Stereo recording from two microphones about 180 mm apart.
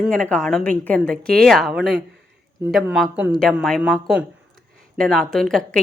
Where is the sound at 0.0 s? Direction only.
5° left (ahead or behind).